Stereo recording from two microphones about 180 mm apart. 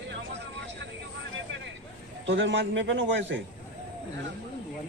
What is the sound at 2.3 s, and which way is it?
A man's voice, 90° right.